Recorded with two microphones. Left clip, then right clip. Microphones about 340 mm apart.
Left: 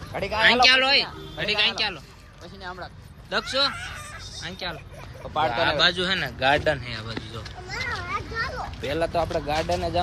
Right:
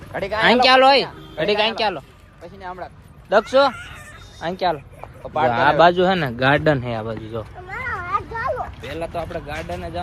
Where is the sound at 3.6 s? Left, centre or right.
Centre.